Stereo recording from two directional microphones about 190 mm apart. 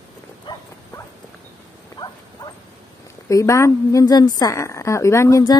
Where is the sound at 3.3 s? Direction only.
15° left (ahead or behind).